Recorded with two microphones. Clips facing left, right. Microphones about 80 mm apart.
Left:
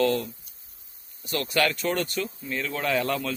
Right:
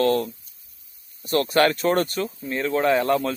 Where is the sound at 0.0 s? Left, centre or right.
Right.